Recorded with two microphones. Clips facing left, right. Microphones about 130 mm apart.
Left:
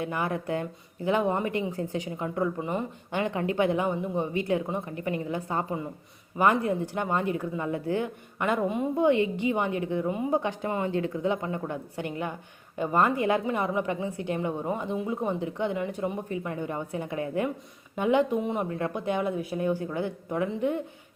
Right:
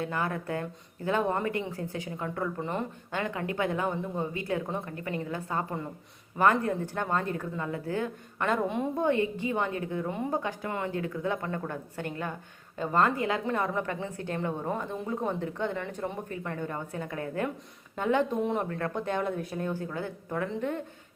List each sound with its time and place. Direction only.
0.0 s a woman's voice: 15° left (ahead or behind)
3.1 s a woman's voice: 20° left (ahead or behind)
9.0 s speech: 20° left (ahead or behind)
10.1 s a woman's voice: 5° left (ahead or behind)
10.4 s a woman's voice: 20° left (ahead or behind)